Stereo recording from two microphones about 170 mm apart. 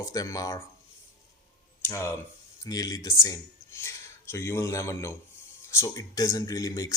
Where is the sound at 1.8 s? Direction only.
15° left (ahead or behind).